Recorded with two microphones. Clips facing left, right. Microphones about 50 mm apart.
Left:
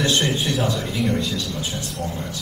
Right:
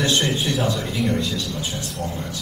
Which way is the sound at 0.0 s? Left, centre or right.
Centre.